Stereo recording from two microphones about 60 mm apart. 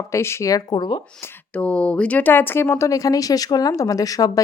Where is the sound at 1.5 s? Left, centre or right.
Centre; by 2.8 s left.